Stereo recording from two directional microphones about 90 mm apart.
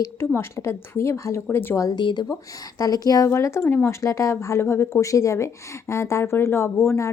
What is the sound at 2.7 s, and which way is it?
Speech, 45° left (ahead or behind).